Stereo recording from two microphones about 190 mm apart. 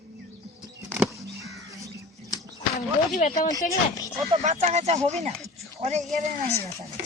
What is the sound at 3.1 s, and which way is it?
Speech, 40° left (ahead or behind).